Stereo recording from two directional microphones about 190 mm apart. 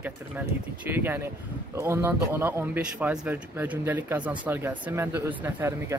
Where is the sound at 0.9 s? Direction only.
10° right (ahead or behind).